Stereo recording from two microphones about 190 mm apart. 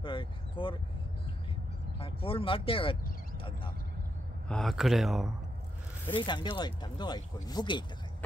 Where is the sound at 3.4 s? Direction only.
25° left (ahead or behind).